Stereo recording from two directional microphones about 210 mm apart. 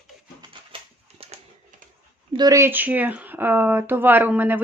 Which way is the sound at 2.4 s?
15° right (ahead or behind).